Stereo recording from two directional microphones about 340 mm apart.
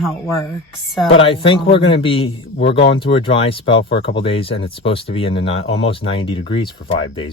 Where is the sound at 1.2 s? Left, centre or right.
Centre.